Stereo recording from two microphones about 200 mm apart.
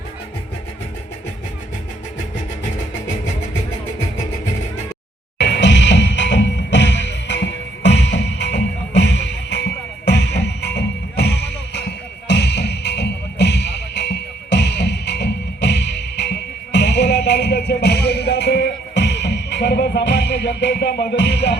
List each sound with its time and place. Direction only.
5.4 s music: 60° left (ahead or behind)